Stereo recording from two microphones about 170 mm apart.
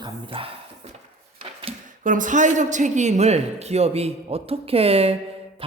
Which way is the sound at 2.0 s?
50° right (ahead or behind).